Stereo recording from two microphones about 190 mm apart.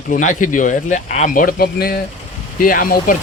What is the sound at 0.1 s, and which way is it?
Speech, 40° left (ahead or behind).